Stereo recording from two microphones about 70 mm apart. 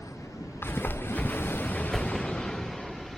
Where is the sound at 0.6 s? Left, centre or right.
Left.